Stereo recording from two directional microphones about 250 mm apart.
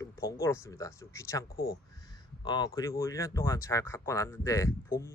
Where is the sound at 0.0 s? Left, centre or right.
Centre.